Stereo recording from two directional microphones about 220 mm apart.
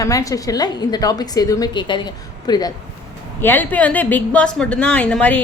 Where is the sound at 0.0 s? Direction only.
15° left (ahead or behind).